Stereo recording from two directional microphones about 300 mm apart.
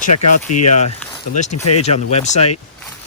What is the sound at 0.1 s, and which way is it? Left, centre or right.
Speech, left.